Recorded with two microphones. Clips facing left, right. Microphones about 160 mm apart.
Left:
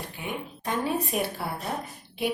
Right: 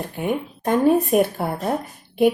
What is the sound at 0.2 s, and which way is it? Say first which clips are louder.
A woman's voice: right 12 dB; 50° right (ahead or behind).